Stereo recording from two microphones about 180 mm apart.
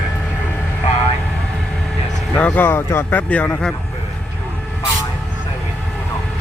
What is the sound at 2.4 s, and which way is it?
Speech, 10° left (ahead or behind).